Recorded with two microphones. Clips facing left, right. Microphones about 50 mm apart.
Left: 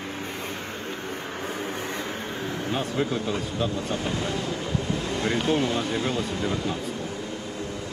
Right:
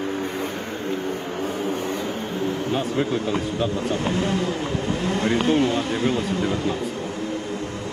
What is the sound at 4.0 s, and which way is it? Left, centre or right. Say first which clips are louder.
Speech: right 5 dB; right.